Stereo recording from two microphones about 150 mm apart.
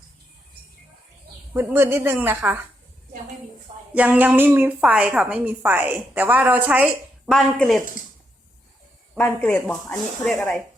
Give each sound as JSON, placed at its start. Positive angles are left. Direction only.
{"t": 1.5, "sound": "speech", "side_deg": -15}
{"t": 3.9, "sound": "speech", "side_deg": -10}
{"t": 9.1, "sound": "speech", "side_deg": 10}